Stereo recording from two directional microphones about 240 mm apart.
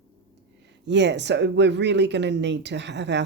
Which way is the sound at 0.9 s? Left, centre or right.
Right.